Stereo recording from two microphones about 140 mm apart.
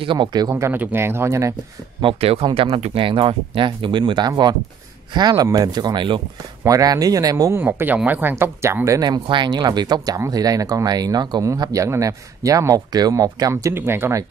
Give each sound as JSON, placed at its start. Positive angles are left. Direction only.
{"t": 0.0, "sound": "speech", "side_deg": -35}
{"t": 0.5, "sound": "speech", "side_deg": -15}
{"t": 2.0, "sound": "speech", "side_deg": -40}